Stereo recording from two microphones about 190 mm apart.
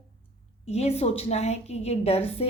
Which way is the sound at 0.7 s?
35° left (ahead or behind).